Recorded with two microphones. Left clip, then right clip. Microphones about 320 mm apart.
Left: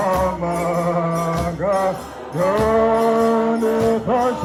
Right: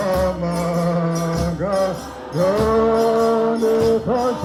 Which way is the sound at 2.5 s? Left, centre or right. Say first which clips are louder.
Left 1 dB; left.